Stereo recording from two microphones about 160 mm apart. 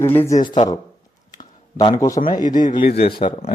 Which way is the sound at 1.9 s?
20° left (ahead or behind).